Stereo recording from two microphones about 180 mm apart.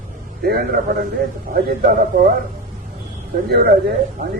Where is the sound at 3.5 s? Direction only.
60° right (ahead or behind).